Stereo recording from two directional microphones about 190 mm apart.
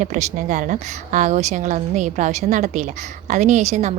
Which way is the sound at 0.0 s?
40° right (ahead or behind).